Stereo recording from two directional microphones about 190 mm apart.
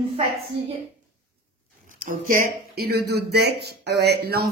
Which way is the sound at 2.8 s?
60° right (ahead or behind).